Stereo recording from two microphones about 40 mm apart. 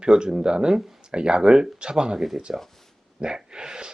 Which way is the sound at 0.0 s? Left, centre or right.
Right.